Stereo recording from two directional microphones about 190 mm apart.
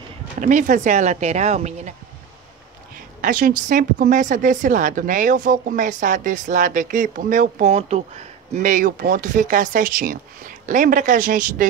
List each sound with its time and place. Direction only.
0.4 s speech: 40° right (ahead or behind)
3.2 s speech: 45° right (ahead or behind)